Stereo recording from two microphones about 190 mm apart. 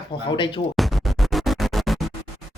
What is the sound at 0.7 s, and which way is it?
Music, centre (ahead or behind).